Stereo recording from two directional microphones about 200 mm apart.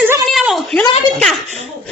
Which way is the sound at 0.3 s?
Centre (ahead or behind).